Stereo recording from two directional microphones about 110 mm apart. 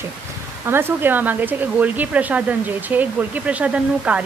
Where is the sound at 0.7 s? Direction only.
20° right (ahead or behind).